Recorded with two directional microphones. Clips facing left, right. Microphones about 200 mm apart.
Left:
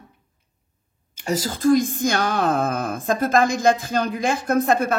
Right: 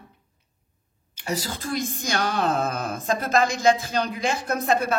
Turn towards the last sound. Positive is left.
turn(degrees=50)  # may be behind; listen again after turning